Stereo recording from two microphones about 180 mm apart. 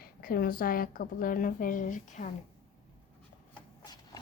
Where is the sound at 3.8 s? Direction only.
20° left (ahead or behind).